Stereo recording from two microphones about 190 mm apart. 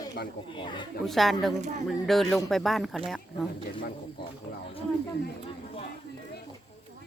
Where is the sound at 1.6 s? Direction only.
35° right (ahead or behind).